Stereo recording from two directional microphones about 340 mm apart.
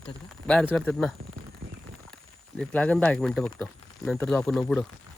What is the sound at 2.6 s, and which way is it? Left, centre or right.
Speech, centre.